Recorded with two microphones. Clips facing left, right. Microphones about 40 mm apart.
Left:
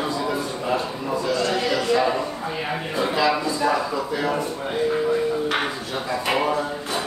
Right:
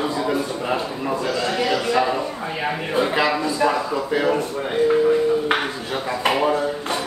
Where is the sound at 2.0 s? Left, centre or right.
Centre.